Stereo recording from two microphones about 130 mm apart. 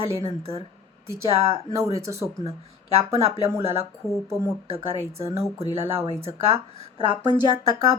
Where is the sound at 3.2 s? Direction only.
50° right (ahead or behind).